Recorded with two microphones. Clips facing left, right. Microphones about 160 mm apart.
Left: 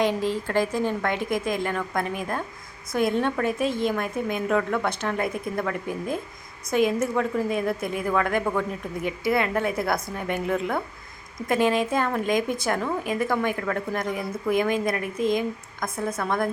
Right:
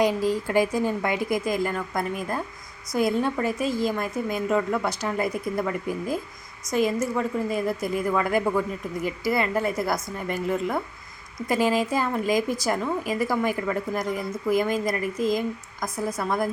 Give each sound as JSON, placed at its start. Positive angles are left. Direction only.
{"t": 0.0, "sound": "a woman's voice", "side_deg": -5}